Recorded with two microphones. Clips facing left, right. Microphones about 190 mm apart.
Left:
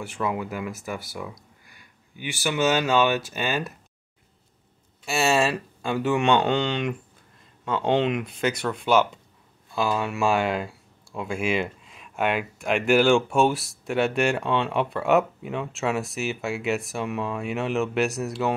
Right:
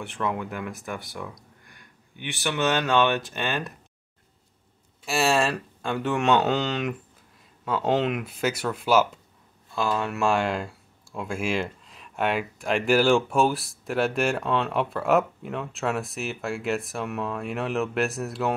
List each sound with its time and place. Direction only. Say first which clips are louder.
0.0 s speech: left 1 dB; centre (ahead or behind)
5.0 s speech: left 1 dB; centre (ahead or behind)